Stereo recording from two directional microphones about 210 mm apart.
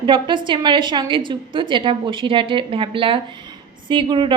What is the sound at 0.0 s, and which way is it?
A woman's voice, 25° right (ahead or behind).